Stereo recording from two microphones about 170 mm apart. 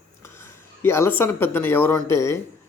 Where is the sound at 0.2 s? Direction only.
15° left (ahead or behind).